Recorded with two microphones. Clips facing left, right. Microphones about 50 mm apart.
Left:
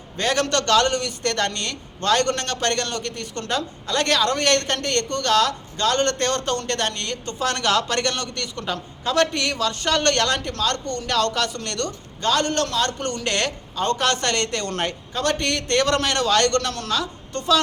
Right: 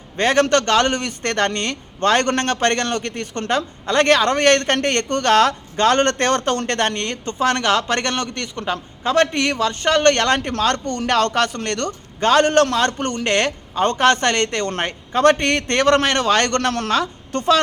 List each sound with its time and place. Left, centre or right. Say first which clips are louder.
0.2 s a man's voice: right 6 dB; right
11.1 s a man's voice: right 4 dB; right
17.3 s a woman's voice: right 6 dB; right